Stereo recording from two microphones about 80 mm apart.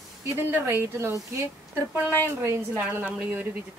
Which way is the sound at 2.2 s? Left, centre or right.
Right.